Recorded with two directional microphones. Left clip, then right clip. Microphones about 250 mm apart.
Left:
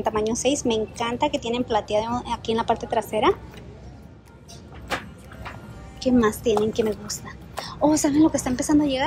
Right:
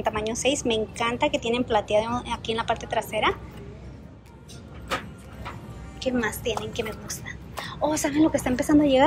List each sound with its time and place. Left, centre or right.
0.0 s a woman's voice: centre
4.8 s vehicle: centre
6.0 s a woman's voice: centre